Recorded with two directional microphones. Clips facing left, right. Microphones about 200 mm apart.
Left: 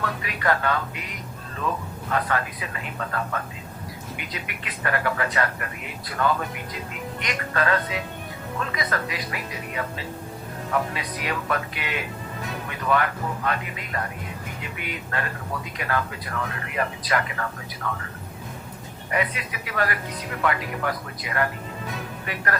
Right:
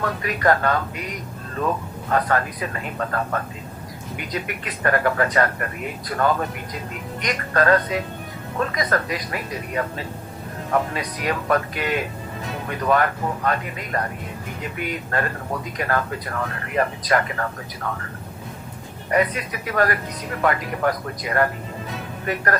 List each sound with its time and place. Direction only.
0.2 s speech: 45° right (ahead or behind)
2.0 s speech: 45° right (ahead or behind)
10.9 s speech: 45° right (ahead or behind)
19.1 s speech: 45° right (ahead or behind)